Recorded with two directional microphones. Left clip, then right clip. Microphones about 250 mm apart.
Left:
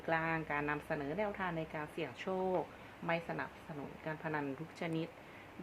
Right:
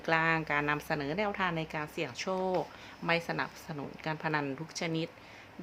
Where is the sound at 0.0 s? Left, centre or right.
Centre.